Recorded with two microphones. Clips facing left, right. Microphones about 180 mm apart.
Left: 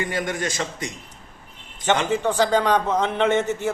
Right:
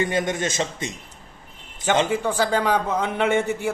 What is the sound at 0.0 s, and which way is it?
Speech, 25° right (ahead or behind).